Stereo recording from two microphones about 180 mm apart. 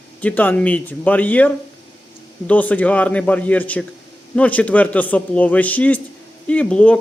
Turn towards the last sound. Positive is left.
turn(degrees=10)  # may be behind; listen again after turning